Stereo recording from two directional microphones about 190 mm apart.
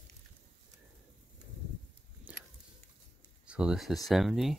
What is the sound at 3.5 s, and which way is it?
Speech, 5° right (ahead or behind).